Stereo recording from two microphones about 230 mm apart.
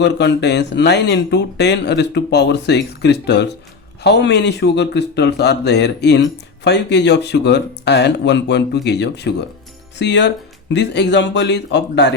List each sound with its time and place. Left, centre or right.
0.0 s speech: left